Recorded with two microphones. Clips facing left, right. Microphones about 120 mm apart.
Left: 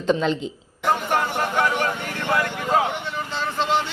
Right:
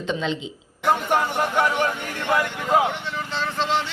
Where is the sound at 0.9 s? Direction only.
10° right (ahead or behind).